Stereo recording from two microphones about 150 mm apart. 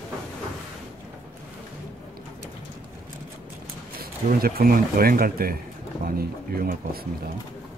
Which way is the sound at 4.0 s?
80° right.